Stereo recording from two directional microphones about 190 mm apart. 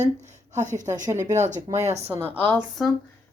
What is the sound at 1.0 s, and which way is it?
Speech, 15° right (ahead or behind).